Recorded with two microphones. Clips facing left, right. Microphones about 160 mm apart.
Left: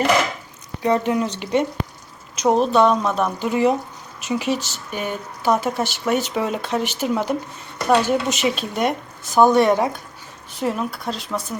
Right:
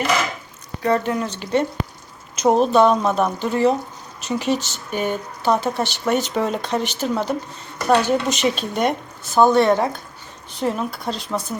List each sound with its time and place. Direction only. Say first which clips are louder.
0.8 s speech: left 1 dB; 15° left (ahead or behind)
2.3 s speech: right 1 dB; centre (ahead or behind)
3.3 s speech: even; 10° left (ahead or behind)
9.3 s speech: even; 15° left (ahead or behind)